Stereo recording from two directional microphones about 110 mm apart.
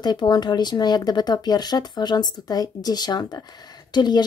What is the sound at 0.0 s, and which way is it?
Speech, 40° left (ahead or behind).